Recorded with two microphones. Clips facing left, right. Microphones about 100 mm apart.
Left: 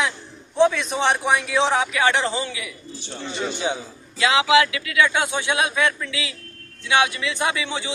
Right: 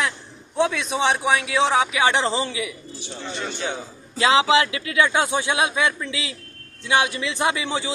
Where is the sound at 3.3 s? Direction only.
10° left (ahead or behind).